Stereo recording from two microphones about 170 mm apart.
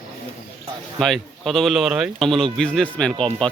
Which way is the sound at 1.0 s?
Centre (ahead or behind).